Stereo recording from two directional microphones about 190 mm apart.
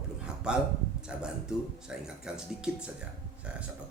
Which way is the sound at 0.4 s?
5° right (ahead or behind).